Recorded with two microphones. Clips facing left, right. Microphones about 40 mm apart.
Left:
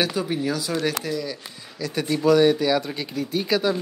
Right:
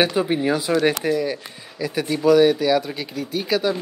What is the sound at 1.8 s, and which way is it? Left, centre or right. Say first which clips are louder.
Speech: right 2 dB; centre.